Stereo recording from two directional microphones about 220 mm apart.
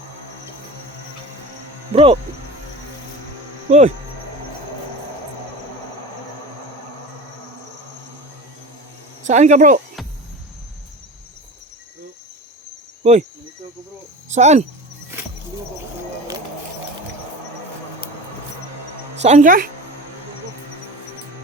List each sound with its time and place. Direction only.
1.9 s speech: 25° right (ahead or behind)
3.7 s speech: 30° right (ahead or behind)
9.2 s speech: 35° right (ahead or behind)
13.0 s cricket: 30° right (ahead or behind)
14.3 s speech: 30° right (ahead or behind)
19.2 s speech: 35° right (ahead or behind)